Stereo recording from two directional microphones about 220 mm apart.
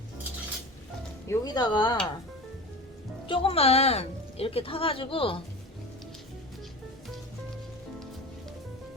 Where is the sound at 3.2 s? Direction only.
25° left (ahead or behind).